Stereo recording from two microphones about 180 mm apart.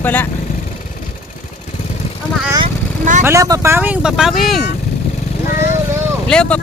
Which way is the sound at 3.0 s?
45° right (ahead or behind).